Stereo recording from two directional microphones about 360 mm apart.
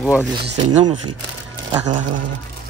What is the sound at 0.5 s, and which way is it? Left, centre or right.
Speech, centre.